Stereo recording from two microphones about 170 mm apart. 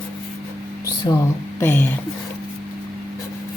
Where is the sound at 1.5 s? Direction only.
15° left (ahead or behind).